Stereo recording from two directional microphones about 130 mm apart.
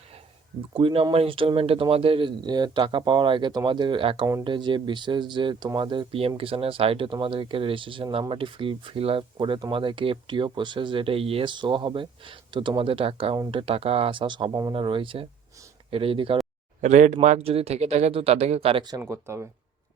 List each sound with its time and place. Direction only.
0.7 s speech: 40° right (ahead or behind)
14.7 s speech: 40° right (ahead or behind)
16.8 s speech: 65° right (ahead or behind); by 18.9 s 45° right (ahead or behind)
18.9 s speech: 20° right (ahead or behind)